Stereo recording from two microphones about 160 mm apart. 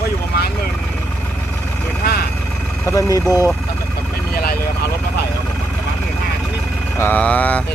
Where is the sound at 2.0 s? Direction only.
75° left (ahead or behind).